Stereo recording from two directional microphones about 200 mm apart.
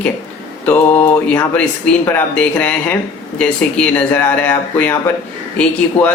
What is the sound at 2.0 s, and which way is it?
Speech, 10° left (ahead or behind).